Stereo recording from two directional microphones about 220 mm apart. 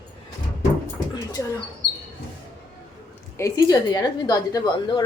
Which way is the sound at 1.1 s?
20° left (ahead or behind).